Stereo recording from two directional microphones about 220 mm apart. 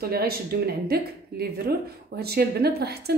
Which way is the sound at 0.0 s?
45° right (ahead or behind).